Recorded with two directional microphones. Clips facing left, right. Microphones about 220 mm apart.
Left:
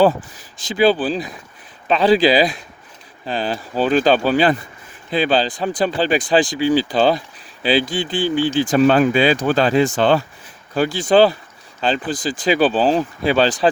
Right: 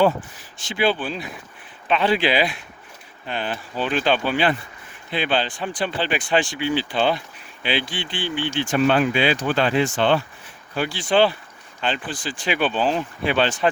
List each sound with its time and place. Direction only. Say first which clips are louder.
0.7 s speech: left 6 dB; 40° left (ahead or behind)